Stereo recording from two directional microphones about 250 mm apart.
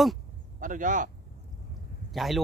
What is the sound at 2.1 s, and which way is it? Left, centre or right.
Speech, centre.